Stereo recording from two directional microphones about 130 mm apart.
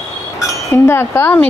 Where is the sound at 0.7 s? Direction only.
20° left (ahead or behind).